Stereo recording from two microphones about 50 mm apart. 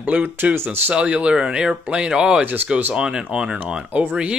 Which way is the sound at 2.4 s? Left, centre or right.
Right.